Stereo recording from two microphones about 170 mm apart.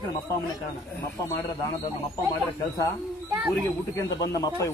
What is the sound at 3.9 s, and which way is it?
Speech, 20° left (ahead or behind).